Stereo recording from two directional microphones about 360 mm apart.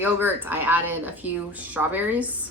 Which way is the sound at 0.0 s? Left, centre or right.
Centre.